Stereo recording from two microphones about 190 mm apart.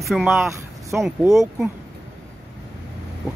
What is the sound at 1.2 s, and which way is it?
Speech, 15° right (ahead or behind).